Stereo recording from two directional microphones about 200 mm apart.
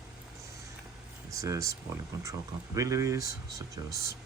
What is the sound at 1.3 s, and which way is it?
Speech, 15° right (ahead or behind).